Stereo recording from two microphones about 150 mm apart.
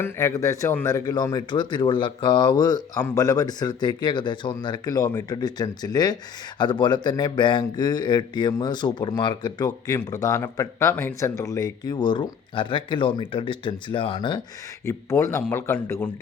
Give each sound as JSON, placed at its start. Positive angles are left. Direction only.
{"t": 0.0, "sound": "speech", "side_deg": 15}
{"t": 14.8, "sound": "a man's voice", "side_deg": 20}